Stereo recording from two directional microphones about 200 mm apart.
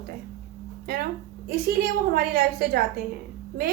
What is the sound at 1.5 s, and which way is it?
A woman's voice, 50° right (ahead or behind).